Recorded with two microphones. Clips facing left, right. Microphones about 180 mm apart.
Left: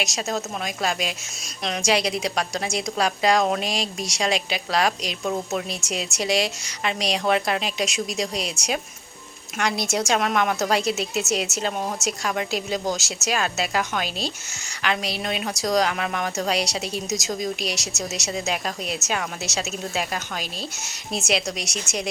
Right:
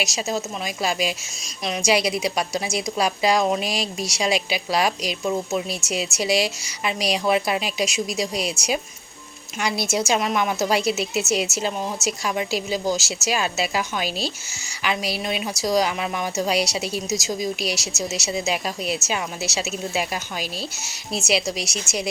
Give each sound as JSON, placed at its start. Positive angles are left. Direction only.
{"t": 0.0, "sound": "a woman's voice", "side_deg": -5}